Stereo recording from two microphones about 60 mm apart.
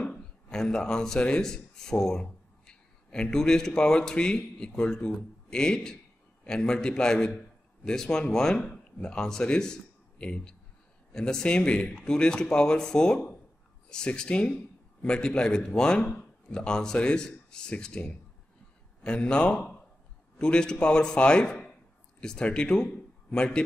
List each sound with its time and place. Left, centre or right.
0.0 s a man's voice: centre